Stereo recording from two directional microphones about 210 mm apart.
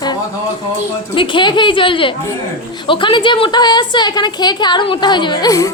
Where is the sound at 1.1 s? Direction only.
25° left (ahead or behind).